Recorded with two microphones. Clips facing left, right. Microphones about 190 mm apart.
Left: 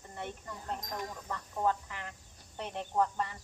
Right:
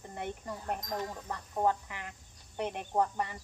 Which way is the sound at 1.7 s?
15° right (ahead or behind).